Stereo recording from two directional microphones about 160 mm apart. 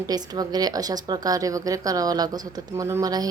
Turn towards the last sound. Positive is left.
turn(degrees=-25)  # may be behind; listen again after turning